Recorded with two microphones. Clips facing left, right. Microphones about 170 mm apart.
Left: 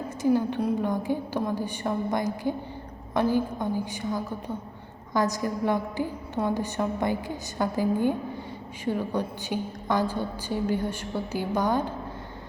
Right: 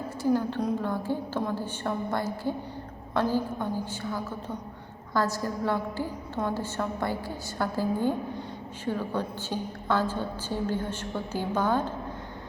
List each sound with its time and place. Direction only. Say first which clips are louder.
0.2 s a woman's voice: left 2 dB; 15° left (ahead or behind)